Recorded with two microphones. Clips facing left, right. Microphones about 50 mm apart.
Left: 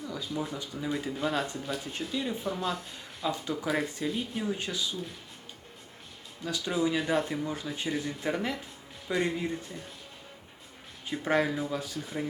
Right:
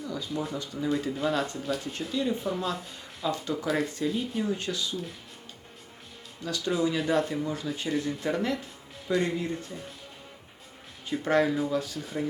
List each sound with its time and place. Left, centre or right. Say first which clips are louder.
0.0 s speech: right 2 dB; centre
6.4 s speech: right 2 dB; centre
11.1 s speech: right 3 dB; centre